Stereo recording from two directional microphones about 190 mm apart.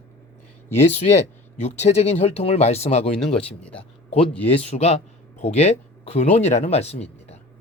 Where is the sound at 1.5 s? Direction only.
35° left (ahead or behind).